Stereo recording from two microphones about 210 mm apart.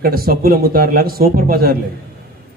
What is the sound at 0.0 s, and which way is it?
A man's voice, 45° right (ahead or behind).